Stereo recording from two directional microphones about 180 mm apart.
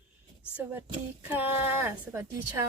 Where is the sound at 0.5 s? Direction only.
10° right (ahead or behind).